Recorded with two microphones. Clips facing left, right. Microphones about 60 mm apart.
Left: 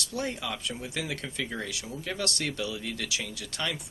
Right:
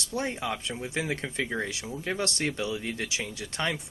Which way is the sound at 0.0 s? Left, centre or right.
Right.